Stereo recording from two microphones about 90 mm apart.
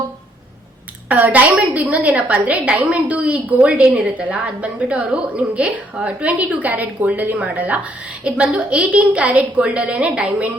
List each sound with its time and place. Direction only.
1.0 s a woman's voice: 15° right (ahead or behind)